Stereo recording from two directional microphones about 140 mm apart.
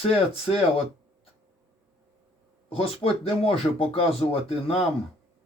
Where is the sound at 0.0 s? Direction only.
45° left (ahead or behind).